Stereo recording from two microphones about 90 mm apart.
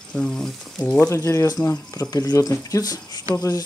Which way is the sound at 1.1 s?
35° left (ahead or behind).